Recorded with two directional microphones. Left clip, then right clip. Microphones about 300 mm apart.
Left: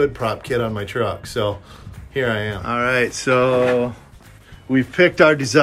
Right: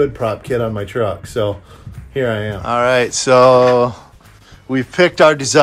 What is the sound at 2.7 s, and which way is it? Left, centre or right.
Speech, centre.